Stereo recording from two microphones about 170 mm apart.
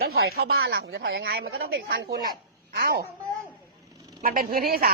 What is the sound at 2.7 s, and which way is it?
Speech, 65° right (ahead or behind).